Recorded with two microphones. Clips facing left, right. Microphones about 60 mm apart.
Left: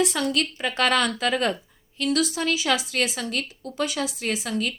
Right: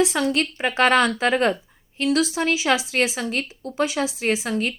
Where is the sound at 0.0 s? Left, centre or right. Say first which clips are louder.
Right 3 dB; right.